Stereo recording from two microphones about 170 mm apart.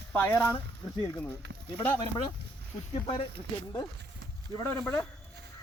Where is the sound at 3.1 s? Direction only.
35° left (ahead or behind).